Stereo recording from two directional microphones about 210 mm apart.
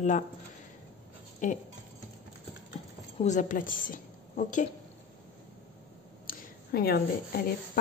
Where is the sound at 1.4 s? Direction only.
40° left (ahead or behind).